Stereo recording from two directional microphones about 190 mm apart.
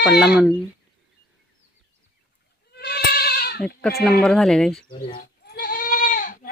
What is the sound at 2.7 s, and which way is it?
Goat, 55° left (ahead or behind).